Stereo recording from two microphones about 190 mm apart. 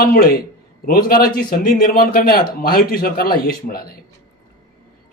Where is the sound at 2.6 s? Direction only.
50° left (ahead or behind).